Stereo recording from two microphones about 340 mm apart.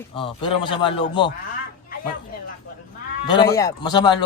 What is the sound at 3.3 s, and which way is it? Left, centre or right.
Speech, centre.